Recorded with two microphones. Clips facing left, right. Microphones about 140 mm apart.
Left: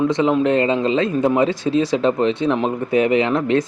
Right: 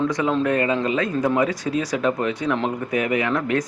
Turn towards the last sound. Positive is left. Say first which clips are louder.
# left 5 dB
turn(degrees=25)  # may be behind; listen again after turning